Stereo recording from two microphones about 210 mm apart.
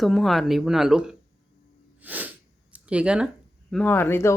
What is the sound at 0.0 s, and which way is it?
Speech, centre (ahead or behind).